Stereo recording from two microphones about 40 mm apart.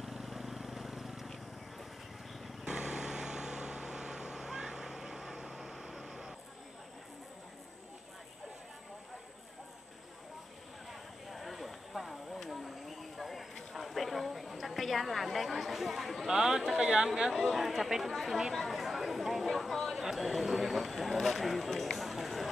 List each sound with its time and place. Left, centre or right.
0.0 s vehicle: centre
2.6 s vehicle: centre
10.9 s a sound: centre
16.3 s speech: centre
17.3 s speech: centre
18.5 s chatter: centre
20.0 s a sound: centre
21.9 s run: centre